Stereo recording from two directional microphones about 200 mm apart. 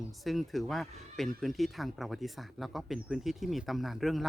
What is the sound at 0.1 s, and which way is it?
Speech, centre (ahead or behind).